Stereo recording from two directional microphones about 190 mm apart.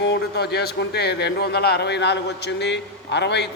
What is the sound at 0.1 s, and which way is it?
A man's voice, 60° left (ahead or behind).